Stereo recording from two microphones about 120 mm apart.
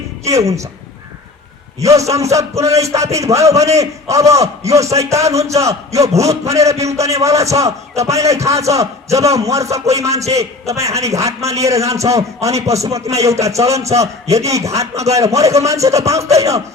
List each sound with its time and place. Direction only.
0.3 s a man's voice: 25° right (ahead or behind)
1.8 s a man's voice: 25° right (ahead or behind)